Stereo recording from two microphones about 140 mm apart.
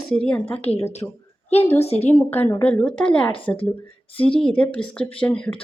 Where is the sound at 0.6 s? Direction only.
50° left (ahead or behind).